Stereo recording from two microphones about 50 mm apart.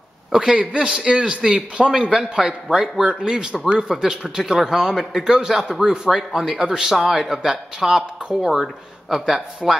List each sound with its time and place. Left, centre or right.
0.4 s a man's voice: centre